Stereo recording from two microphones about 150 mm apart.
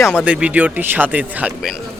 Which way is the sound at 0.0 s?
10° left (ahead or behind).